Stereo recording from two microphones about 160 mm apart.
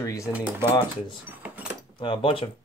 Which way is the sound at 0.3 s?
10° right (ahead or behind).